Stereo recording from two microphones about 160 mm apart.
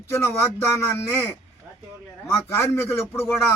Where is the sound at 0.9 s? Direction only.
15° left (ahead or behind).